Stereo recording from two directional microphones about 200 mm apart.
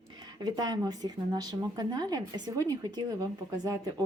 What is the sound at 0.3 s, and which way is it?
A woman's voice, 20° right (ahead or behind).